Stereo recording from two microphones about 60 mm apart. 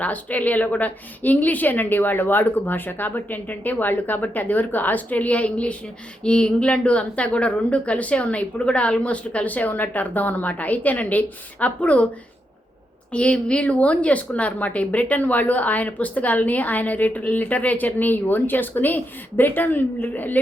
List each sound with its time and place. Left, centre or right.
0.0 s a woman's voice: left
13.1 s a woman's voice: centre